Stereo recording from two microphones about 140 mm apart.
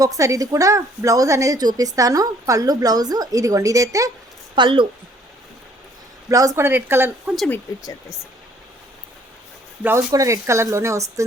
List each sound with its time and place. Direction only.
0.0 s a woman's voice: 25° right (ahead or behind)
4.5 s speech: 35° right (ahead or behind)
6.2 s speech: 25° right (ahead or behind)
9.8 s a woman's voice: 20° right (ahead or behind)